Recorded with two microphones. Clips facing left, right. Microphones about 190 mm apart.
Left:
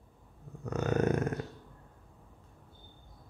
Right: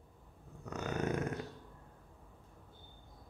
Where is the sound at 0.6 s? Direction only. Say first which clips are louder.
Left 7 dB; 45° left (ahead or behind).